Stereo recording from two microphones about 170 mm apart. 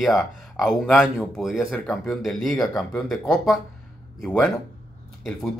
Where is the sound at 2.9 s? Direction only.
5° left (ahead or behind).